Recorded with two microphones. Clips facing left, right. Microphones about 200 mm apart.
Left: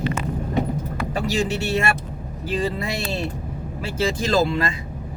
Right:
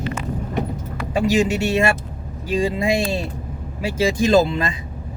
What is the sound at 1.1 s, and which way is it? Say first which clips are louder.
Speech: right 6 dB; 15° right (ahead or behind).